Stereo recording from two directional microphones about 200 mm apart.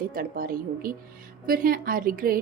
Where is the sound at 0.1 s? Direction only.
45° right (ahead or behind).